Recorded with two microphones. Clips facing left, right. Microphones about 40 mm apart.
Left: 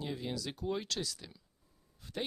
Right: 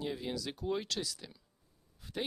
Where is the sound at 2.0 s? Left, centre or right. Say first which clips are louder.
Even; centre.